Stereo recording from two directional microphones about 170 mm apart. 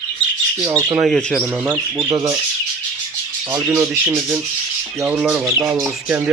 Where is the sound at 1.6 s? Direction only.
20° right (ahead or behind).